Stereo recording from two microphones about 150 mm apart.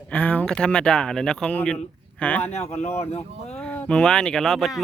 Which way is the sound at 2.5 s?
45° left (ahead or behind).